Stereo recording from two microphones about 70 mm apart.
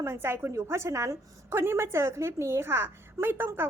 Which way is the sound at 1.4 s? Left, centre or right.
Right.